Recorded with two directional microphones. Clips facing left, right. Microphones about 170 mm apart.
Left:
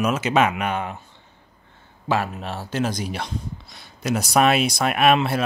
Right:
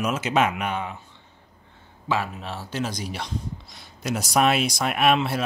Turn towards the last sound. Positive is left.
turn(degrees=60)  # may be behind; listen again after turning